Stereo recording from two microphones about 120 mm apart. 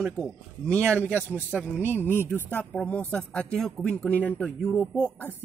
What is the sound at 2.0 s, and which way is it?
Speech, 15° left (ahead or behind).